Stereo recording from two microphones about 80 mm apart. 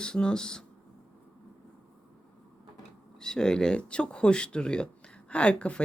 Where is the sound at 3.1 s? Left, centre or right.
Centre.